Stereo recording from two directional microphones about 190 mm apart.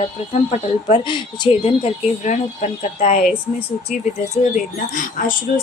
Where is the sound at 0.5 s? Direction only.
30° left (ahead or behind).